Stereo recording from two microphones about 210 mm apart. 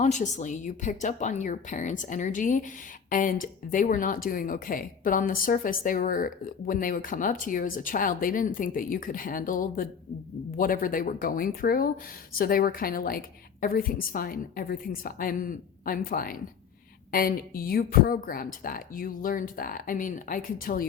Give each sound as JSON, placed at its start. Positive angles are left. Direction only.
{"t": 0.0, "sound": "a woman's voice", "side_deg": 35}